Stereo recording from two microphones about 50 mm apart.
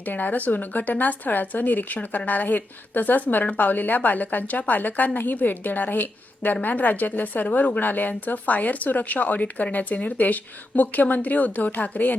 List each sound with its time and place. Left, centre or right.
0.0 s speech: left